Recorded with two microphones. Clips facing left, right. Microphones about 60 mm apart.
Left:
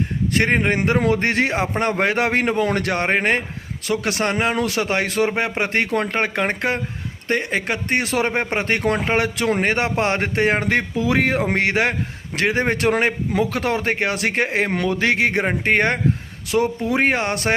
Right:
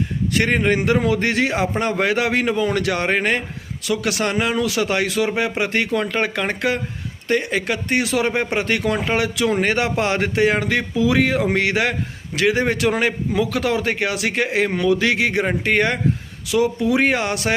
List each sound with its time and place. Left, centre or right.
0.3 s a man's voice: left